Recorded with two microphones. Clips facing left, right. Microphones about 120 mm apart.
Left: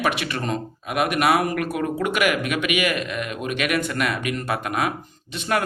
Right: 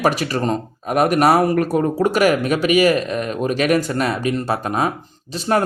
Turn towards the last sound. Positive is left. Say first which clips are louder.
# right 5 dB
turn(degrees=-35)  # may be behind; listen again after turning